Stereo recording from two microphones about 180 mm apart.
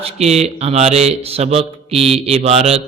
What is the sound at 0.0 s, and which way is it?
Speech, 35° right (ahead or behind).